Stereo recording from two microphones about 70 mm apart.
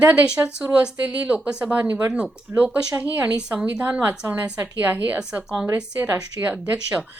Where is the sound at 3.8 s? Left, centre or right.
Right.